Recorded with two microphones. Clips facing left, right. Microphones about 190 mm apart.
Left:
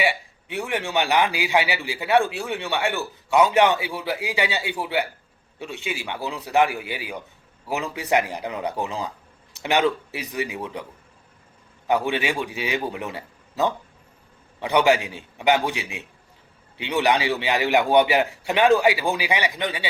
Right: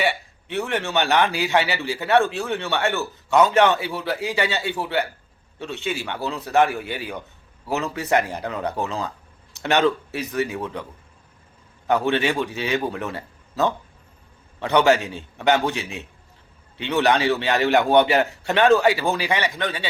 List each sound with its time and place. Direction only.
0.0 s a man's voice: 10° left (ahead or behind)
11.9 s a man's voice: 10° left (ahead or behind)